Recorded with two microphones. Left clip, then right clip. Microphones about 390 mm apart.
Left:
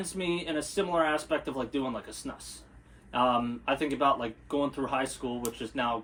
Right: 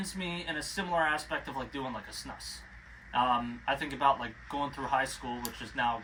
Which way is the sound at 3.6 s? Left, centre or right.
Centre.